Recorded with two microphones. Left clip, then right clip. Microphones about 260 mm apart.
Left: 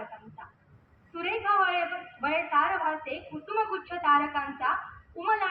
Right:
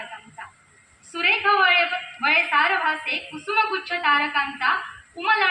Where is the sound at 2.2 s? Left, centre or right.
Centre.